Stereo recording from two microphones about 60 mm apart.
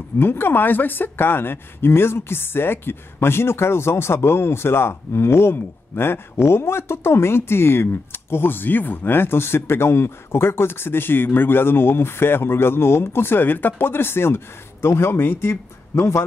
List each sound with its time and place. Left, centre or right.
0.2 s speech: left